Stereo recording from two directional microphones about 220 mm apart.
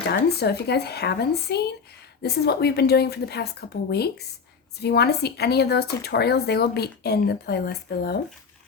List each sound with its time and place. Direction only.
0.1 s speech: 45° left (ahead or behind)